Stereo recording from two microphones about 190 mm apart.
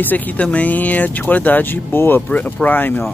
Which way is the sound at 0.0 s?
10° left (ahead or behind).